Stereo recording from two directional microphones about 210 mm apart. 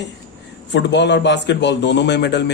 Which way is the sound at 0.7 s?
55° left (ahead or behind).